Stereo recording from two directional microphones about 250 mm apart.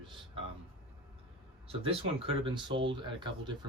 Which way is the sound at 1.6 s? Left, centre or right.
Right.